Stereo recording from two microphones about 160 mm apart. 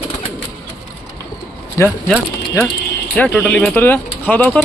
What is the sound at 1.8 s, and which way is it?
Speech, 20° left (ahead or behind).